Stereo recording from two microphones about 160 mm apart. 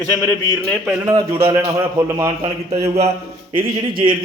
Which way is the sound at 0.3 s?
5° left (ahead or behind).